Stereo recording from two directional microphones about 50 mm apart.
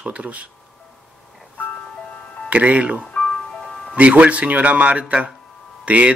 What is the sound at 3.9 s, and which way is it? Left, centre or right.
Speech, right.